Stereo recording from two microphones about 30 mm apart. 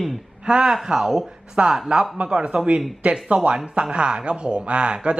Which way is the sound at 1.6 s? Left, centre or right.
Right.